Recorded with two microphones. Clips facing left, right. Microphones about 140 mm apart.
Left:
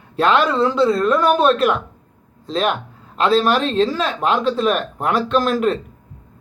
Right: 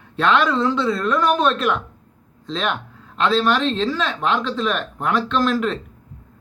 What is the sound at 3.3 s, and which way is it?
Speech, 40° left (ahead or behind).